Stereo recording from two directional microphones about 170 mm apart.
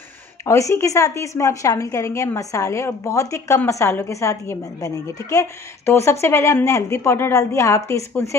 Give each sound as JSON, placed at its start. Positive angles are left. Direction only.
{"t": 0.5, "sound": "a woman's voice", "side_deg": 15}